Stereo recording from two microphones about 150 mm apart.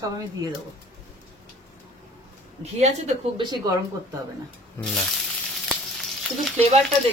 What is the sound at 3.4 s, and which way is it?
Speech, 30° right (ahead or behind).